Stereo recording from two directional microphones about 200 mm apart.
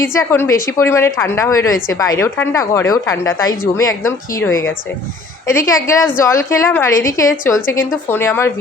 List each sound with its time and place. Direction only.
0.0 s a woman's voice: 15° left (ahead or behind)